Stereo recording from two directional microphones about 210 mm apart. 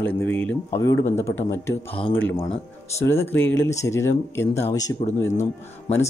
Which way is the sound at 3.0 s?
10° left (ahead or behind).